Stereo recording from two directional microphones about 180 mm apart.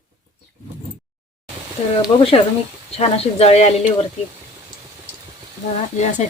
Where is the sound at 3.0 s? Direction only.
35° left (ahead or behind).